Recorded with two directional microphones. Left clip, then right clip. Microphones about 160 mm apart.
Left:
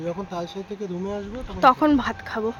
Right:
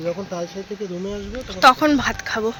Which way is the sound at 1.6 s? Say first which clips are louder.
Right 3 dB; 10° left (ahead or behind).